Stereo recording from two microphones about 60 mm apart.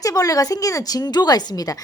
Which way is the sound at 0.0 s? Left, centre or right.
Left.